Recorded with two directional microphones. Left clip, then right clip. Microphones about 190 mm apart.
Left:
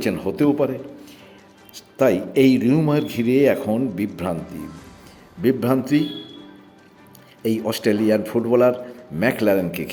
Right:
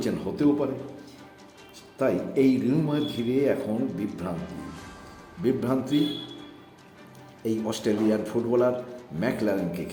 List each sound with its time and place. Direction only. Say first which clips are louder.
0.0 s speech: left 5 dB; 30° left (ahead or behind)
1.7 s speech: left 8 dB; 25° left (ahead or behind)
5.4 s speech: left 6 dB; 25° left (ahead or behind)
7.4 s speech: left 6 dB; 20° left (ahead or behind)